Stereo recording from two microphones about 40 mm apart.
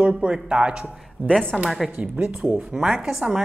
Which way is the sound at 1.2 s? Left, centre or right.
Right.